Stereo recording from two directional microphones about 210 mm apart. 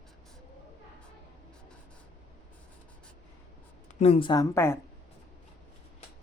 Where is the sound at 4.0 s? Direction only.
25° left (ahead or behind).